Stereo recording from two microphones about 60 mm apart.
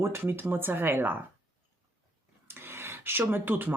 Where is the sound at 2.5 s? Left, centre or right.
Right.